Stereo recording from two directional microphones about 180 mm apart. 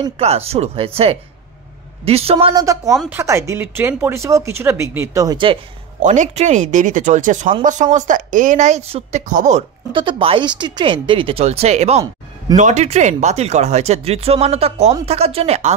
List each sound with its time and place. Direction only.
0.2 s speech: 35° right (ahead or behind)
2.6 s speech: 20° right (ahead or behind)
6.0 s speech: 45° right (ahead or behind)
9.9 s speech: 30° right (ahead or behind)